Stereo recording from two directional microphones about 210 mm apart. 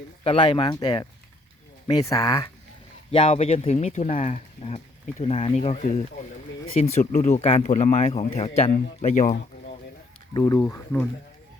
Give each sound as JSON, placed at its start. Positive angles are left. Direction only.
{"t": 0.3, "sound": "speech", "side_deg": 25}
{"t": 7.0, "sound": "speech", "side_deg": 30}
{"t": 10.3, "sound": "speech", "side_deg": 15}